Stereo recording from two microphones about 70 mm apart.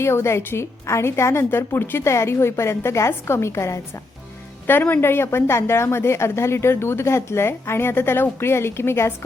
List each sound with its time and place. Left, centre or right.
0.0 s a woman's voice: left
4.6 s a woman's voice: left